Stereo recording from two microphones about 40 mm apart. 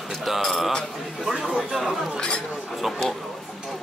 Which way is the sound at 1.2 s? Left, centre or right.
Centre.